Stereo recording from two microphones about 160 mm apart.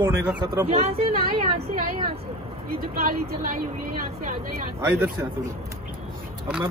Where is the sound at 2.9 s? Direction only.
70° right (ahead or behind).